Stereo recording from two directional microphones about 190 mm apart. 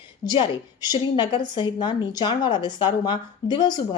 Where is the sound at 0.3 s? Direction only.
20° left (ahead or behind).